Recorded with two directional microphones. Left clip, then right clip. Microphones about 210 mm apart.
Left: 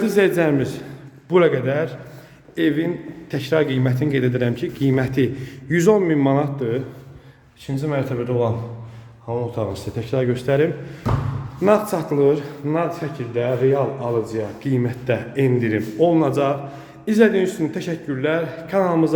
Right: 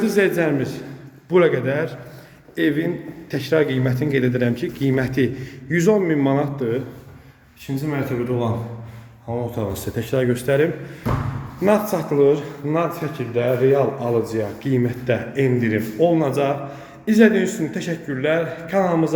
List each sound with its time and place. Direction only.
0.0 s a man's voice: 20° left (ahead or behind)
5.6 s a man's voice: 20° left (ahead or behind); by 12.9 s 5° left (ahead or behind)
13.1 s speech: 10° right (ahead or behind)
14.7 s a man's voice: 5° left (ahead or behind)